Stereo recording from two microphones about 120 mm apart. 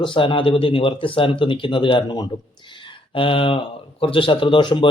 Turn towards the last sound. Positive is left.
turn(degrees=45)  # may be behind; listen again after turning